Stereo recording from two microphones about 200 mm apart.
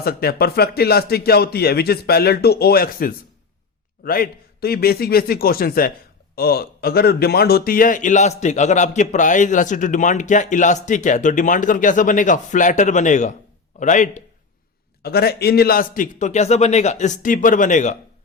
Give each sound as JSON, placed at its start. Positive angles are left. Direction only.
{"t": 0.0, "sound": "a man's voice", "side_deg": 50}
{"t": 15.0, "sound": "speech", "side_deg": 50}